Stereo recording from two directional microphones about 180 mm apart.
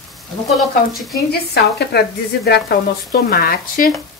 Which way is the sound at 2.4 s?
60° left (ahead or behind).